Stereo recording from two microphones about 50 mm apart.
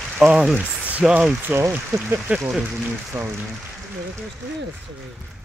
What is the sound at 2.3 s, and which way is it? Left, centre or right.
Speech, right.